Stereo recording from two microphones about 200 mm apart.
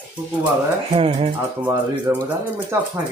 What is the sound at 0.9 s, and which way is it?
Speech, 30° right (ahead or behind).